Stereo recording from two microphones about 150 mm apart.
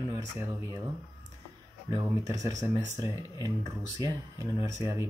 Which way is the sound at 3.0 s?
20° right (ahead or behind).